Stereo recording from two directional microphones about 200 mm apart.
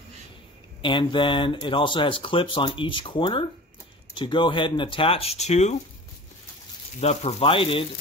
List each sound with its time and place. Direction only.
0.8 s speech: 25° left (ahead or behind)
7.0 s speech: 30° left (ahead or behind)